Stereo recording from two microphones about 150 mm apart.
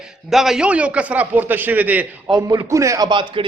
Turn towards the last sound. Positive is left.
turn(degrees=-30)  # may be behind; listen again after turning